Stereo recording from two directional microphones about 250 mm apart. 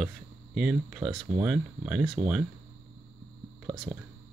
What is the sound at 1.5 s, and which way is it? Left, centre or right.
Speech, centre.